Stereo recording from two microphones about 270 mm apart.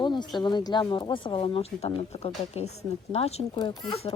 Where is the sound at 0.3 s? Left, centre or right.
Centre.